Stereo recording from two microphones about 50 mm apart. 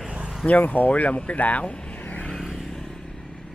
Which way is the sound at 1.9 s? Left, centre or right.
Left.